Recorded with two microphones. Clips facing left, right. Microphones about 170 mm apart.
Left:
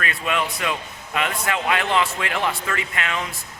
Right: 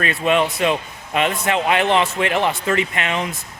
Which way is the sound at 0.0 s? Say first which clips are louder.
Right 7 dB; 25° right (ahead or behind).